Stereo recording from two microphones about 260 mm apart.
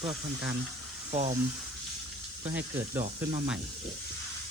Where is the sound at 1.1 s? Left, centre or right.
Right.